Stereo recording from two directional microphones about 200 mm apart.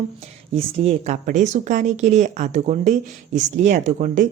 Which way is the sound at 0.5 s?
35° right (ahead or behind).